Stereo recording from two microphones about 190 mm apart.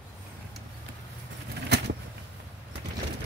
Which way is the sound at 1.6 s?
60° right (ahead or behind).